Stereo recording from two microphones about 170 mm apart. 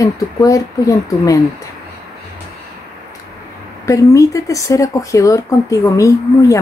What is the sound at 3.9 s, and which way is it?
Speech, 20° left (ahead or behind).